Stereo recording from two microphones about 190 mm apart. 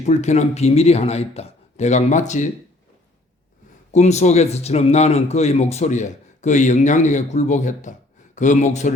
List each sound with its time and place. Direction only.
0.0 s speech: 35° left (ahead or behind)
3.9 s speech: 35° left (ahead or behind)